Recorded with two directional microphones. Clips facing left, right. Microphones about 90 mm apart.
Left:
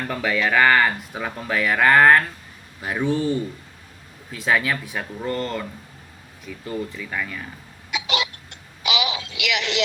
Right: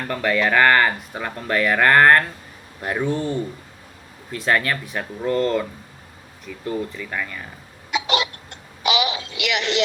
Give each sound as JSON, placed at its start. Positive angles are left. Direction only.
{"t": 0.0, "sound": "speech", "side_deg": 0}
{"t": 7.9, "sound": "cough", "side_deg": -40}